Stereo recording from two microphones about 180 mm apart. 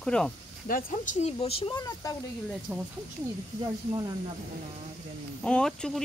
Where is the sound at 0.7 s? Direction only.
50° left (ahead or behind); by 2.2 s 20° left (ahead or behind).